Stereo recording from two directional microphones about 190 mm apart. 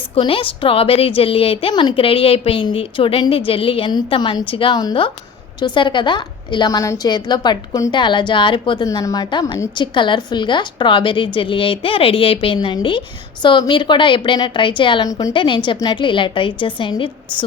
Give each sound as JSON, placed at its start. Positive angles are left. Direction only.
{"t": 0.2, "sound": "a woman's voice", "side_deg": 30}